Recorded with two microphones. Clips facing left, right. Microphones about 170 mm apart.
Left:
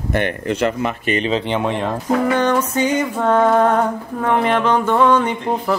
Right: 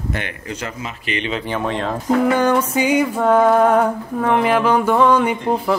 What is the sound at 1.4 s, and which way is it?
Speech, 20° left (ahead or behind).